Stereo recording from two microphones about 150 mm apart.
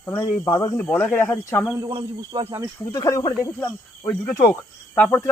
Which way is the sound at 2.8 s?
25° left (ahead or behind).